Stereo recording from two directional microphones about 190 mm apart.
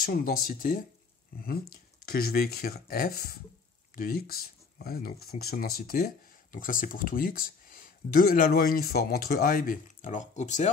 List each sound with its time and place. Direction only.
0.0 s speech: 50° left (ahead or behind)
2.0 s speech: 55° left (ahead or behind)